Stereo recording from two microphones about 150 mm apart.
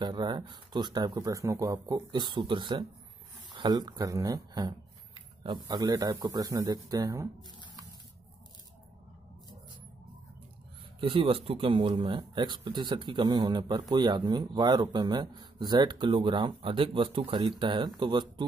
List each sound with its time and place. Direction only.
0.0 s speech: 30° right (ahead or behind)
11.0 s speech: 35° right (ahead or behind)